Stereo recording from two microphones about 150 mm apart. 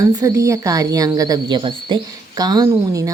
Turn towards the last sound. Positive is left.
turn(degrees=-25)  # may be behind; listen again after turning